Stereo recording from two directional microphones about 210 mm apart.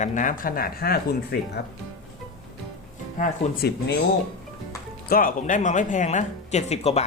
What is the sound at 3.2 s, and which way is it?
Speech, 40° left (ahead or behind).